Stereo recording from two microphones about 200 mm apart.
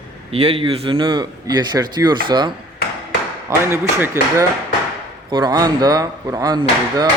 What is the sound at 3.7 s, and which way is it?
A man's voice, 15° right (ahead or behind).